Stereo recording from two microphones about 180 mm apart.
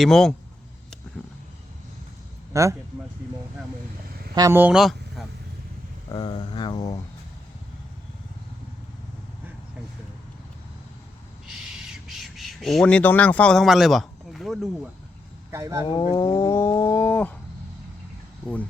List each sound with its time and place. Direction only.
0.0 s speech: 5° left (ahead or behind)
2.5 s speech: 15° right (ahead or behind)
4.4 s speech: 15° right (ahead or behind)
6.1 s speech: 25° left (ahead or behind)
11.4 s crow: 5° right (ahead or behind)
15.5 s speech: 15° right (ahead or behind)
16.1 s a sound: 15° left (ahead or behind)
18.4 s a sound: 10° left (ahead or behind)